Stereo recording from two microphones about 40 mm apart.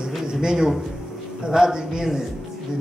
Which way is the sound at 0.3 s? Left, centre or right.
Centre.